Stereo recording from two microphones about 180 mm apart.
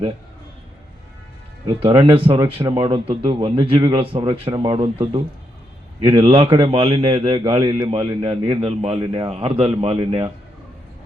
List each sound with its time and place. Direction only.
1.8 s a man's voice: 30° right (ahead or behind)
6.1 s a man's voice: 30° right (ahead or behind)